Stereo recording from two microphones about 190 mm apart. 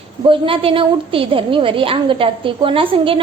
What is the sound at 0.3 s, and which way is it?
A woman's voice, 30° right (ahead or behind).